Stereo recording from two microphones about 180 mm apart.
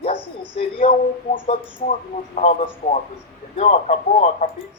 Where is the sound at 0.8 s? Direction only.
40° left (ahead or behind).